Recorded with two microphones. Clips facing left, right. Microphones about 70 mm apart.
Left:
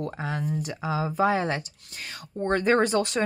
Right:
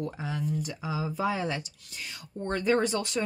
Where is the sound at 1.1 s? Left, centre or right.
Left.